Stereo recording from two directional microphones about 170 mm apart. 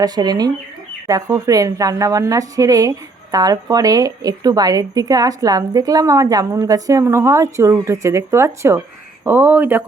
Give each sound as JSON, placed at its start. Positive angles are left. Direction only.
{"t": 0.0, "sound": "a woman's voice", "side_deg": -25}